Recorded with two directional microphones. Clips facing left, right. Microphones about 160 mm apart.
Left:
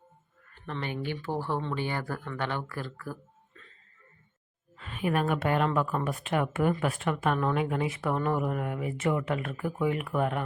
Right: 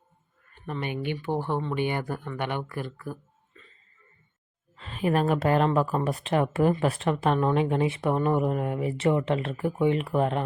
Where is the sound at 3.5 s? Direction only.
5° right (ahead or behind).